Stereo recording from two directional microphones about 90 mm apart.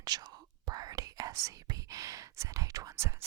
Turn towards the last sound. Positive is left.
turn(degrees=-30)  # may be behind; listen again after turning